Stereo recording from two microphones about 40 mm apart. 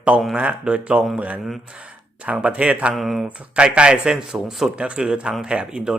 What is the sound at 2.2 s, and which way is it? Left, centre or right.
Speech, right.